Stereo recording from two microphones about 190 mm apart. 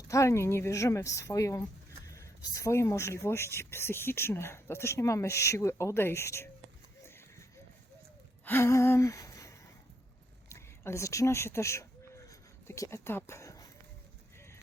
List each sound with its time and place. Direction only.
0.1 s speech: 15° left (ahead or behind)
7.0 s horse: 15° left (ahead or behind)
8.4 s a sound: 15° left (ahead or behind)